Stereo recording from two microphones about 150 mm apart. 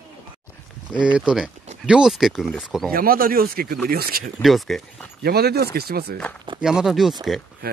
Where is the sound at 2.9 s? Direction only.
75° right (ahead or behind).